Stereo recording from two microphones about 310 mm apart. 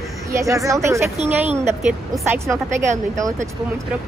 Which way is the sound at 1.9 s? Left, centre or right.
Centre.